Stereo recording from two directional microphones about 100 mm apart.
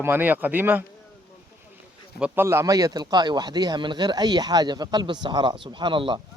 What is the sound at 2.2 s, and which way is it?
Speech, 20° right (ahead or behind).